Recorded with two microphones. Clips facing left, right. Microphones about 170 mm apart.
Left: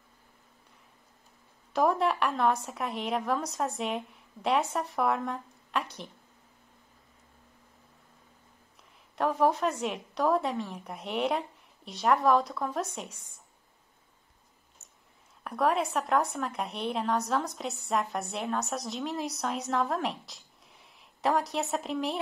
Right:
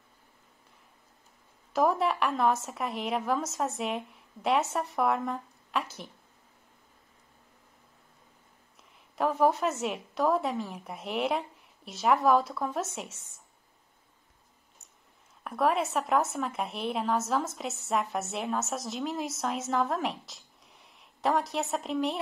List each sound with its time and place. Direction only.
1.7 s a woman's voice: centre (ahead or behind)
9.1 s a woman's voice: centre (ahead or behind)
15.4 s a woman's voice: centre (ahead or behind)